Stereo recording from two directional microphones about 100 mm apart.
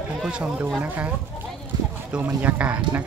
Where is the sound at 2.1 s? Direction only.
15° right (ahead or behind).